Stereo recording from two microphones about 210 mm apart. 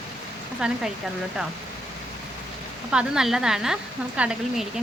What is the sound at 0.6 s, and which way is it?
Speech, 5° right (ahead or behind).